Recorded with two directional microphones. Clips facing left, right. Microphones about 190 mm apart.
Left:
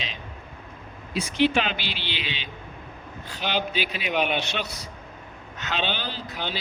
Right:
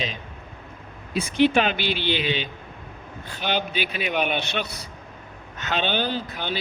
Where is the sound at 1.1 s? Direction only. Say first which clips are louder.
Right 3 dB; 55° right (ahead or behind).